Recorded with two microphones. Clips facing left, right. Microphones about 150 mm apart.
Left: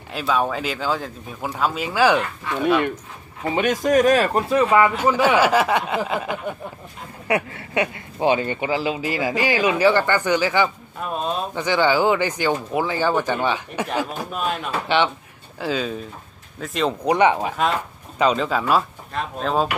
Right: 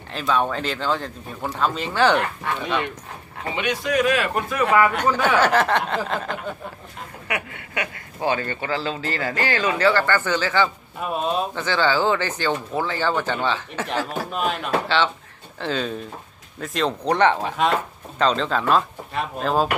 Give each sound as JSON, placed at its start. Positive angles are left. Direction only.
{"t": 0.1, "sound": "speech", "side_deg": 5}
{"t": 3.5, "sound": "a man's voice", "side_deg": 45}
{"t": 5.0, "sound": "speech", "side_deg": 10}
{"t": 7.2, "sound": "speech", "side_deg": 30}
{"t": 11.0, "sound": "speech", "side_deg": -5}
{"t": 11.5, "sound": "speech", "side_deg": 15}
{"t": 14.3, "sound": "speech", "side_deg": 0}